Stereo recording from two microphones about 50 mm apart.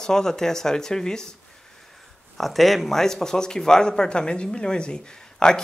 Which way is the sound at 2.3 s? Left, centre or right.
Centre.